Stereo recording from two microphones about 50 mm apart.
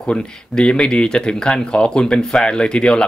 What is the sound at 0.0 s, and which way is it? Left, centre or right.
Speech, centre.